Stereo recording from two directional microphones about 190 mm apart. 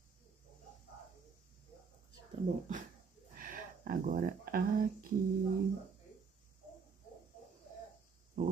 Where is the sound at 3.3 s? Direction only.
45° right (ahead or behind).